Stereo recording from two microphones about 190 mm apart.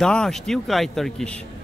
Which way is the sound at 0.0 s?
5° left (ahead or behind).